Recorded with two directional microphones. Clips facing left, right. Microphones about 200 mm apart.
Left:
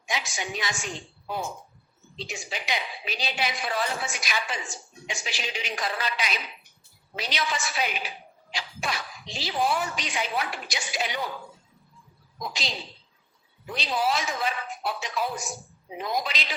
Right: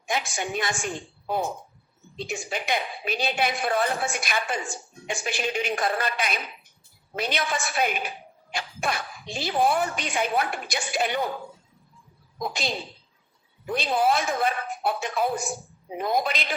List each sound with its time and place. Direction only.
0.0 s a woman's voice: 55° right (ahead or behind)
12.4 s a woman's voice: 55° right (ahead or behind)